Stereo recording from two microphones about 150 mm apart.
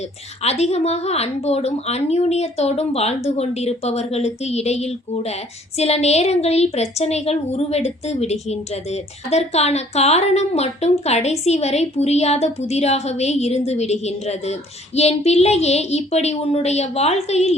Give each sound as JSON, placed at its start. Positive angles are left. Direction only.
{"t": 0.4, "sound": "a woman's voice", "side_deg": 45}